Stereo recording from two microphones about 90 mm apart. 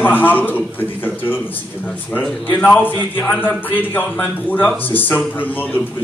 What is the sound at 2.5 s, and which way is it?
Speech, 15° left (ahead or behind).